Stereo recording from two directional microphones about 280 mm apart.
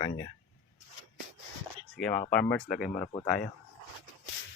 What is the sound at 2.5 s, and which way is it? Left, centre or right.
Speech, left.